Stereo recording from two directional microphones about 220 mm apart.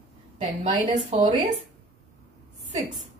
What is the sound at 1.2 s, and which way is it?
Speech, 20° right (ahead or behind).